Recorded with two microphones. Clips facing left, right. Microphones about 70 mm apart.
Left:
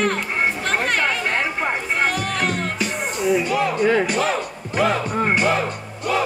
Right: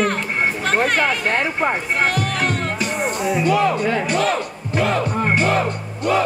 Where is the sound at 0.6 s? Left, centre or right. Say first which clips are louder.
Right 3 dB; centre.